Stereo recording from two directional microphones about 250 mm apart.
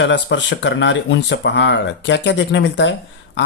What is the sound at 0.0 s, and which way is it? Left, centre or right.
Speech, left.